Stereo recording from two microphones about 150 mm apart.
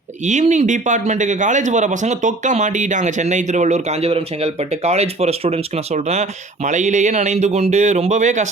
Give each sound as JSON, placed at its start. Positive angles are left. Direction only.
{"t": 0.3, "sound": "a man's voice", "side_deg": -50}